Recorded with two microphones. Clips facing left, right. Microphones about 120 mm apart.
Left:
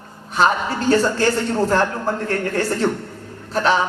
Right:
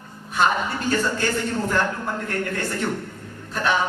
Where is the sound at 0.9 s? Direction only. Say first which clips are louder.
Left 7 dB; 35° left (ahead or behind).